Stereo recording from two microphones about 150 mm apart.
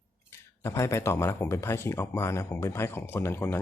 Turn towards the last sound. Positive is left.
turn(degrees=15)  # may be behind; listen again after turning